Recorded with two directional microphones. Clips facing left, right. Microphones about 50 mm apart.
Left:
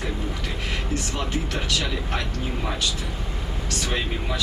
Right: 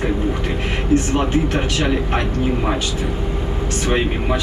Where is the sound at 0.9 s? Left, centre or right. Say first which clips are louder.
Right 13 dB; right.